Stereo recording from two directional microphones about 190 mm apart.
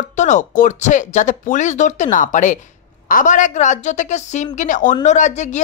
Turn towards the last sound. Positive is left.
turn(degrees=40)  # may be behind; listen again after turning